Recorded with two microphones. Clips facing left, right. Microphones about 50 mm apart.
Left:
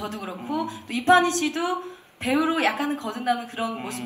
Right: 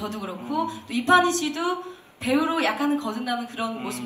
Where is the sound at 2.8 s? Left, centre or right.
Right.